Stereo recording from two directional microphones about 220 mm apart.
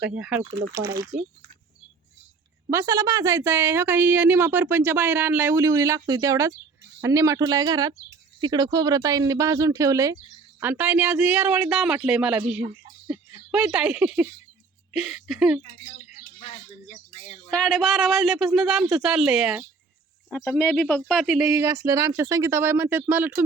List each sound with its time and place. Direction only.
0.0 s a man's voice: 5° right (ahead or behind)
2.6 s a man's voice: 15° right (ahead or behind)
16.0 s bird: 35° left (ahead or behind)
17.5 s a man's voice: centre (ahead or behind)